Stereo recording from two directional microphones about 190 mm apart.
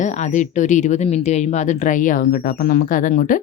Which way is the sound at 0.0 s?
40° left (ahead or behind).